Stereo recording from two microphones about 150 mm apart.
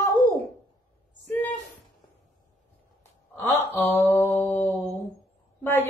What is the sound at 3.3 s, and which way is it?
Mantra, 15° left (ahead or behind).